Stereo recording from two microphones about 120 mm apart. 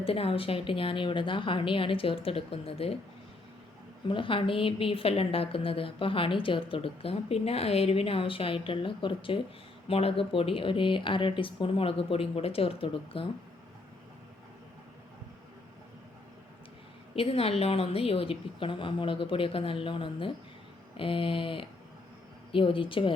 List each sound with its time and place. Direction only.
0.0 s a woman's voice: 55° left (ahead or behind)
4.1 s a woman's voice: 45° left (ahead or behind)
17.2 s a woman's voice: 55° left (ahead or behind)